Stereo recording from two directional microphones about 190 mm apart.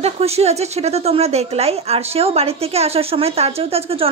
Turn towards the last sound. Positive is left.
turn(degrees=-30)  # may be behind; listen again after turning